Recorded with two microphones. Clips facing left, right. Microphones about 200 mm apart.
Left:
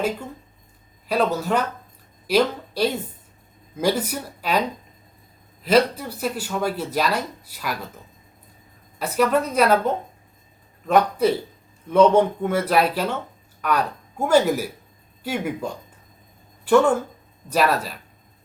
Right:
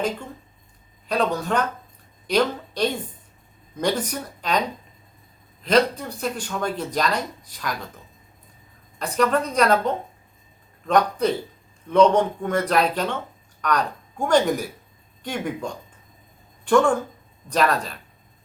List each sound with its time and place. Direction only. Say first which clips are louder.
1.0 s speech: left 2 dB; 5° left (ahead or behind)
5.6 s speech: left 1 dB; 5° left (ahead or behind)
9.0 s speech: left 1 dB; 5° left (ahead or behind)